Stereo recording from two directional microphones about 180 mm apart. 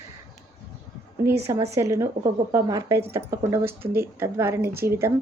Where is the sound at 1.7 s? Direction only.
15° right (ahead or behind).